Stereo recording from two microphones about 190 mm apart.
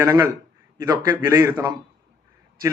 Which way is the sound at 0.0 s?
15° right (ahead or behind).